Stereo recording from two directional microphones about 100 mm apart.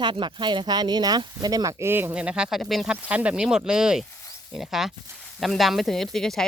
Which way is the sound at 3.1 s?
15° right (ahead or behind).